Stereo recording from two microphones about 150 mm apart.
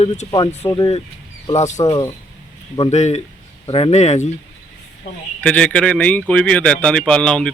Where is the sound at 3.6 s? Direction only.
35° left (ahead or behind).